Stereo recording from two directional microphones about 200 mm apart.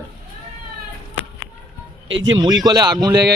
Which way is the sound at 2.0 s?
70° right (ahead or behind).